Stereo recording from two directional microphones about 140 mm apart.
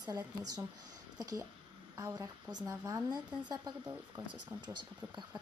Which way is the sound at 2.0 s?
25° right (ahead or behind).